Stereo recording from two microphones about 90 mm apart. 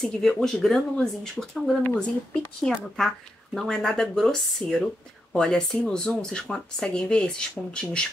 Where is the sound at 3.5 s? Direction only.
5° left (ahead or behind).